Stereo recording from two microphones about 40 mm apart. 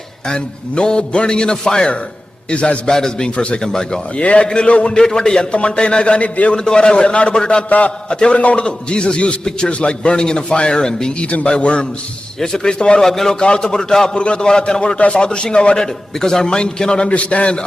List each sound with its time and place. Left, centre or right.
0.3 s a man's voice: left
2.9 s a man's voice: centre
4.2 s a man's voice: left
6.6 s a man's voice: left
7.7 s a man's voice: left
12.4 s a man's voice: centre
13.1 s a man's voice: centre
13.4 s a man's voice: left
14.9 s a man's voice: left
17.1 s a man's voice: left